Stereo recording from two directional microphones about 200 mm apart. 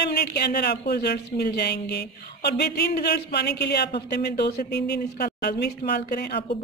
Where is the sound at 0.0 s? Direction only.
55° left (ahead or behind).